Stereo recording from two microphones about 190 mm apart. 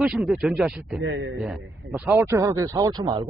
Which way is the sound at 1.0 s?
80° right.